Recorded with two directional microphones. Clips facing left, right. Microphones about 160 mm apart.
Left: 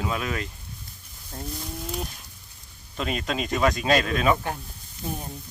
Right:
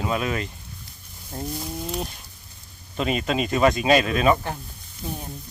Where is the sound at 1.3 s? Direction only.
10° right (ahead or behind).